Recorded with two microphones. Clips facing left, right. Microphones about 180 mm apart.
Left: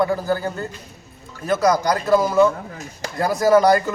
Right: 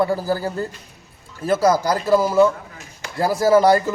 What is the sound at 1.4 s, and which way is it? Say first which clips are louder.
Speech: right 1 dB; 30° right (ahead or behind).